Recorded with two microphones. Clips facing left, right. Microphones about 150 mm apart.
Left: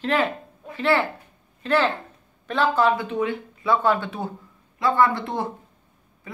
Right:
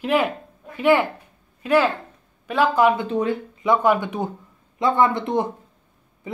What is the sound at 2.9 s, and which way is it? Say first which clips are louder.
Speech: right 3 dB; 35° right (ahead or behind).